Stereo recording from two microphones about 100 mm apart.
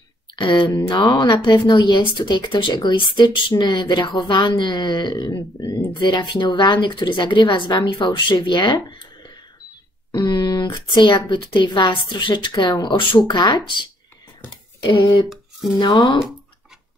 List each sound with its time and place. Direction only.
0.4 s speech: 50° left (ahead or behind)
14.8 s speech: 50° left (ahead or behind)